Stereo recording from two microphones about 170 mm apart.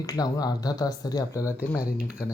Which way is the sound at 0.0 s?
20° left (ahead or behind).